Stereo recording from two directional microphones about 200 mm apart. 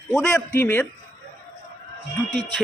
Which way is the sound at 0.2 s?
10° left (ahead or behind).